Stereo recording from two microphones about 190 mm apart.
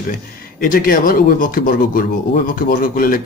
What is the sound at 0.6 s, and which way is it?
Speech, 50° left (ahead or behind).